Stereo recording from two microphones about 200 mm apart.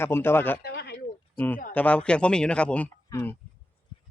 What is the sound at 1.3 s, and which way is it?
Speech, 10° left (ahead or behind).